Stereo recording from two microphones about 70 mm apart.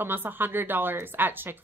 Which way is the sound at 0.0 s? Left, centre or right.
Right.